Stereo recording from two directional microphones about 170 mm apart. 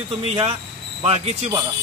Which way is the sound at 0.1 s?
35° right (ahead or behind).